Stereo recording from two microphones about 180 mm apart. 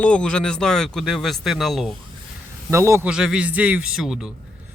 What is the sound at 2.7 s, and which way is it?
A man's voice, 15° right (ahead or behind).